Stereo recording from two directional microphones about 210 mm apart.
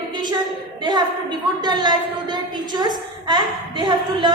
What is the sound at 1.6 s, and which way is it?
A woman's voice, 20° right (ahead or behind).